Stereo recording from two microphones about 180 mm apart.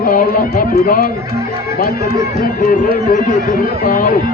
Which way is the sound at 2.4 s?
55° left (ahead or behind).